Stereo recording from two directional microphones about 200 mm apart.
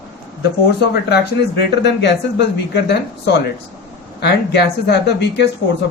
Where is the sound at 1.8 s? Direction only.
60° left (ahead or behind).